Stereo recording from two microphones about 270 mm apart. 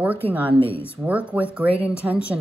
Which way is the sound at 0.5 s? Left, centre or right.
Right.